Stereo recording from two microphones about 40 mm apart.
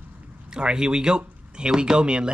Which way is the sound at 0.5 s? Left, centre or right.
Centre.